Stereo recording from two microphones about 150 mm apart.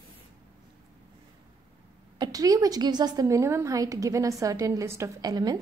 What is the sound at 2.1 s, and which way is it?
A woman's voice, 25° right (ahead or behind).